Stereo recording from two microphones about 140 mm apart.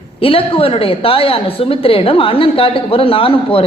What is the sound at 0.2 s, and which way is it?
A woman's voice, 40° left (ahead or behind).